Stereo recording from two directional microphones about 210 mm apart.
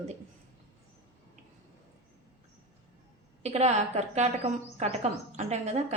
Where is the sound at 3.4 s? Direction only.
30° right (ahead or behind).